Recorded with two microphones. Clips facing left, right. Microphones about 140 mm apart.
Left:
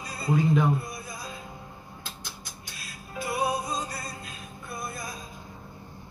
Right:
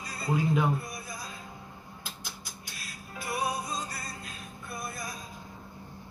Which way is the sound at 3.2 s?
25° left (ahead or behind).